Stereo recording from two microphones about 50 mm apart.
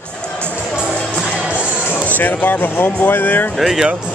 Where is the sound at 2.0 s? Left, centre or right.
Left.